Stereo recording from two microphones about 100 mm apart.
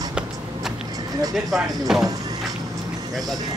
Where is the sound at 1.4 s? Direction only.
Centre (ahead or behind).